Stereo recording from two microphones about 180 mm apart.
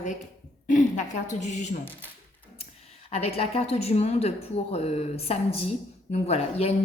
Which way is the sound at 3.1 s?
35° left (ahead or behind).